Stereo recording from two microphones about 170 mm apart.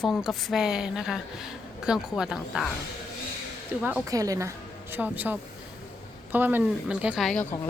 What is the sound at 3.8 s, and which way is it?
A woman's voice, 10° right (ahead or behind).